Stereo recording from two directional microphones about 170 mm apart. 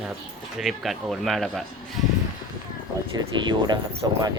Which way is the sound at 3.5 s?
25° right (ahead or behind).